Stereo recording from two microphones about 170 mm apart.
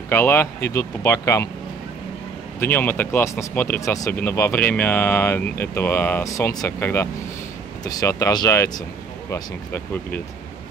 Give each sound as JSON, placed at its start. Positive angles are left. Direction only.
{"t": 0.1, "sound": "speech", "side_deg": 15}
{"t": 2.6, "sound": "speech", "side_deg": 10}